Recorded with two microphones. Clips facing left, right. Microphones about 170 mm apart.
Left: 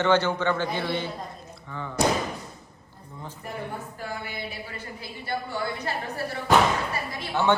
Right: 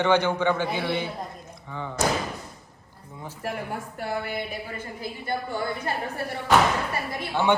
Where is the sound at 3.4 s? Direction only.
85° right.